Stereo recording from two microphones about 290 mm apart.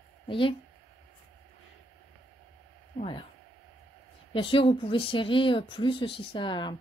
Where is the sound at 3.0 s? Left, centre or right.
Centre.